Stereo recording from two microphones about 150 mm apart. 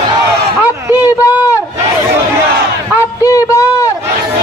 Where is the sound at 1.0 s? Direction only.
20° left (ahead or behind).